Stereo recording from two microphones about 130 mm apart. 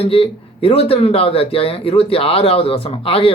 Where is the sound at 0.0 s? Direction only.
45° left (ahead or behind).